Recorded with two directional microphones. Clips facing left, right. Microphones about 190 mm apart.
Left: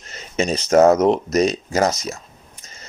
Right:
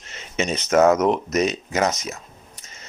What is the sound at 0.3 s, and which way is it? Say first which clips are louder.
Speech: left 3 dB; 35° left (ahead or behind).